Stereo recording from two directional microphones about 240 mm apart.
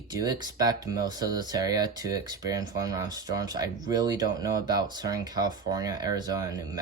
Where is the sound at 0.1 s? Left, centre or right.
Centre.